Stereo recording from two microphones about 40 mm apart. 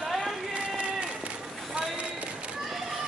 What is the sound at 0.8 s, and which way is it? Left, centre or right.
Run, right.